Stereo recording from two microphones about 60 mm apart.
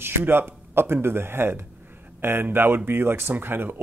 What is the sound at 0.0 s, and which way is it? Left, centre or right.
Speech, right.